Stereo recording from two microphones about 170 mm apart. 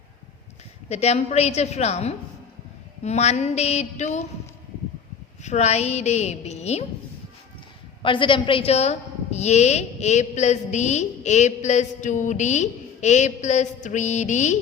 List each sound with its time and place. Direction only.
0.9 s a woman's voice: 40° left (ahead or behind)
5.4 s a woman's voice: 40° left (ahead or behind)
8.0 s a woman's voice: 30° left (ahead or behind)